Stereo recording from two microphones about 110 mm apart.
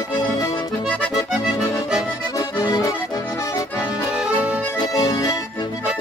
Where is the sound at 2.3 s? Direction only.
35° left (ahead or behind).